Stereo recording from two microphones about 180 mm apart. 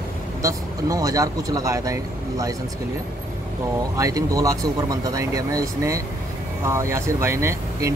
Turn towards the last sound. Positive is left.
turn(degrees=-15)  # may be behind; listen again after turning